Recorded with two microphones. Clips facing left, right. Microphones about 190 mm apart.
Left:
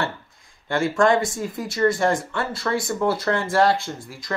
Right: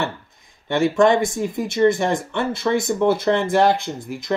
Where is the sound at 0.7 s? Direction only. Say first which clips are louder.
Right 3 dB; 20° right (ahead or behind).